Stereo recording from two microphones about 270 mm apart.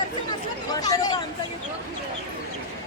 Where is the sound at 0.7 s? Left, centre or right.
Centre.